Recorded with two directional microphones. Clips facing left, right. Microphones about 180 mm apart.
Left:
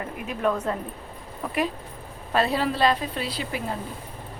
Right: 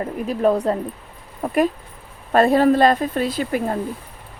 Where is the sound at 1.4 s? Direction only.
45° right (ahead or behind).